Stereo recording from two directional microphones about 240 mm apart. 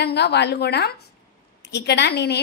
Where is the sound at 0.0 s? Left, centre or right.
Left.